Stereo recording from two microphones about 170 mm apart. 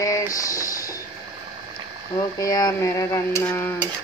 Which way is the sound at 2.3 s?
20° left (ahead or behind).